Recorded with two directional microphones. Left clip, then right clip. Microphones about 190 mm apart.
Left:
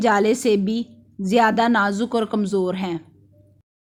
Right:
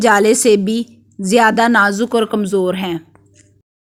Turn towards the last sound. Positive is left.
turn(degrees=-20)  # may be behind; listen again after turning